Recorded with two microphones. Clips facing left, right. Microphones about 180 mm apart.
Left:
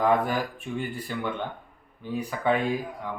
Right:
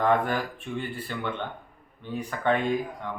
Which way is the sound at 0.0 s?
10° left (ahead or behind).